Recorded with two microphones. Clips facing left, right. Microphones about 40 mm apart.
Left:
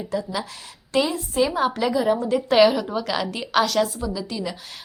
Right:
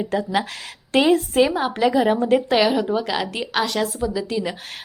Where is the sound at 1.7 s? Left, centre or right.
Right.